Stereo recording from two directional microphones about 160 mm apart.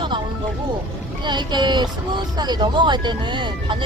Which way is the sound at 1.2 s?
30° right (ahead or behind).